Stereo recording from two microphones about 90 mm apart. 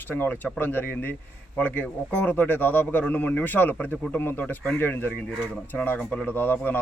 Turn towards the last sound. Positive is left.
turn(degrees=25)  # may be behind; listen again after turning